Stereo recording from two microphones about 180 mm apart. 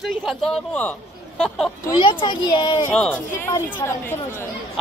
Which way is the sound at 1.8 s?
25° left (ahead or behind).